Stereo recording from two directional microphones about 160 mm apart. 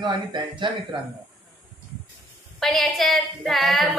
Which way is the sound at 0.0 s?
30° right (ahead or behind).